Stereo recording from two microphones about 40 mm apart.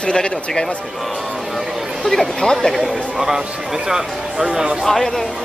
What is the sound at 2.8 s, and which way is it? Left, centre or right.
Speech, centre.